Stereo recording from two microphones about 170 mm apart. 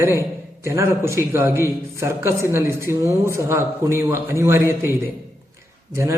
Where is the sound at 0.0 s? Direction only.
15° right (ahead or behind).